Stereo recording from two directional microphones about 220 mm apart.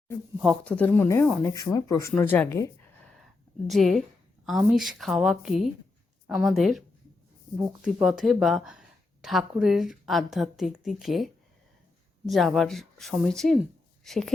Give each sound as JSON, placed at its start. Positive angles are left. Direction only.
{"t": 0.4, "sound": "speech", "side_deg": 5}
{"t": 3.7, "sound": "a woman's voice", "side_deg": 0}